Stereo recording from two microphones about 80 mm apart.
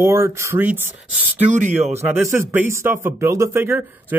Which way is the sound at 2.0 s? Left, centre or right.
Right.